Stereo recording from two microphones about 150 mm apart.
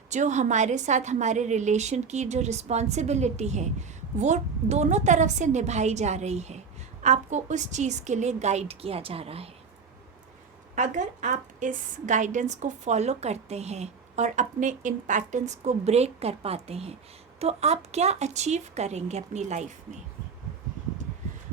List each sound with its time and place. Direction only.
0.1 s a woman's voice: 50° right (ahead or behind)
10.8 s a woman's voice: 55° right (ahead or behind)